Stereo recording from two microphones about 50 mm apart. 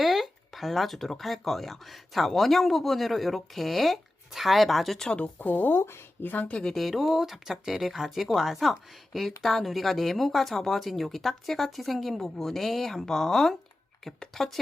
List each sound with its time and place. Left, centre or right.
0.0 s speech: centre
5.0 s speech: left
5.4 s speech: left
5.7 s speech: left
6.2 s speech: left
6.7 s speech: centre